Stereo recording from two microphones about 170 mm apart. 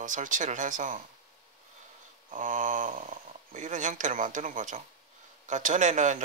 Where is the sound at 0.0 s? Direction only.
50° right (ahead or behind).